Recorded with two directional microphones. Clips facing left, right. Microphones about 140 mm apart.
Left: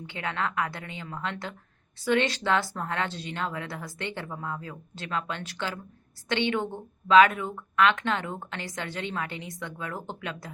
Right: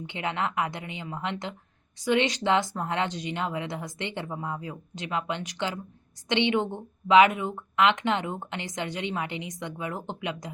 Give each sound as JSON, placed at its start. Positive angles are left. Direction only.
{"t": 0.0, "sound": "a woman's voice", "side_deg": -20}